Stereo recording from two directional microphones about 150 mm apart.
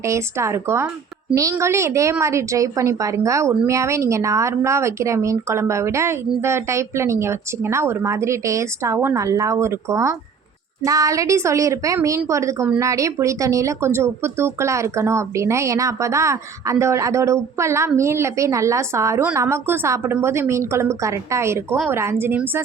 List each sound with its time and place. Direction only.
0.0 s a woman's voice: 20° right (ahead or behind)